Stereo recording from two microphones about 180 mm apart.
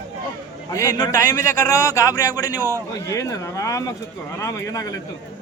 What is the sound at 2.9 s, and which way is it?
A man's voice, 20° left (ahead or behind).